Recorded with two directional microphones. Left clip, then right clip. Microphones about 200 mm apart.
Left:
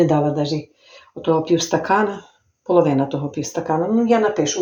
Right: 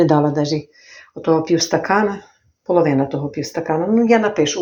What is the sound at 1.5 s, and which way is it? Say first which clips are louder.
Speech: right 1 dB; 20° right (ahead or behind).